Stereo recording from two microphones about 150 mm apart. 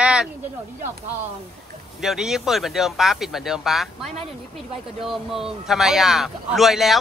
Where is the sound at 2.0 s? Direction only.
5° right (ahead or behind).